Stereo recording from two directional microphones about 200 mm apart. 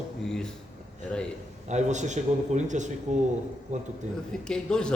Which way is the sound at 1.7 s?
35° right (ahead or behind).